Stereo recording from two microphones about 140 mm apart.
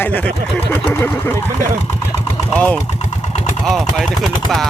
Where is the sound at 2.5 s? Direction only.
5° left (ahead or behind).